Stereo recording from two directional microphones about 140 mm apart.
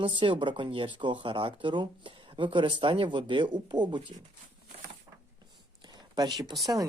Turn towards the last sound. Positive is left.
turn(degrees=-30)  # may be behind; listen again after turning